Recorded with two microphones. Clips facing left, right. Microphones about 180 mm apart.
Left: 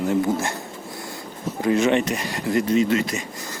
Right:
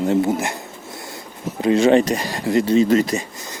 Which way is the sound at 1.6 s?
30° right (ahead or behind).